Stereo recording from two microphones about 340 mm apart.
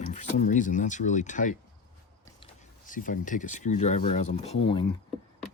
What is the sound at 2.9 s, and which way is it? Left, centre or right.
Speech, left.